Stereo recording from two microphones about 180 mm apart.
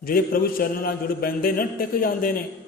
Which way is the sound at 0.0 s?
55° left (ahead or behind).